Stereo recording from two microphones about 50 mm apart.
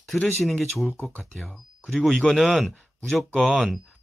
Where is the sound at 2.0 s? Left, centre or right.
Centre.